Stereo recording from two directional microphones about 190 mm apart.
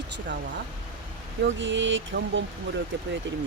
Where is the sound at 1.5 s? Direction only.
75° right (ahead or behind).